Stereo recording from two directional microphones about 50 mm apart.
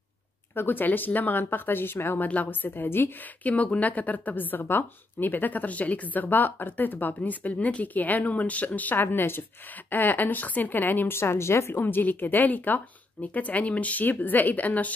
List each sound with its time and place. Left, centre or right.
0.6 s a woman's voice: left
2.2 s a woman's voice: left
2.7 s speech: left
3.4 s a woman's voice: left
7.2 s a woman's voice: left
9.0 s speech: left
9.8 s a woman's voice: left
11.1 s speech: left
11.8 s a woman's voice: left